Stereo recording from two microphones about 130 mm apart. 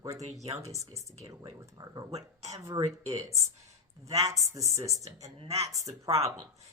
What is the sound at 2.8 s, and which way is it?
Speech, 25° right (ahead or behind).